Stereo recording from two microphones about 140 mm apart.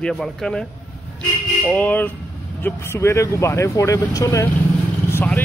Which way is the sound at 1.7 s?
10° left (ahead or behind).